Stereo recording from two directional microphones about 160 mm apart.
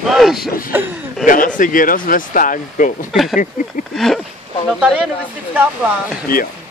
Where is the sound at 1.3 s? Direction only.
55° left (ahead or behind).